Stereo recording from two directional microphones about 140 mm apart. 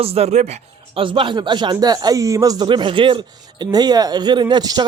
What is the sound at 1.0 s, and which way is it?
Speech, 35° right (ahead or behind).